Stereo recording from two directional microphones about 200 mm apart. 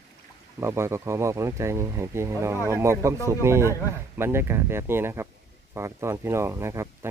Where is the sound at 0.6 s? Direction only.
15° right (ahead or behind).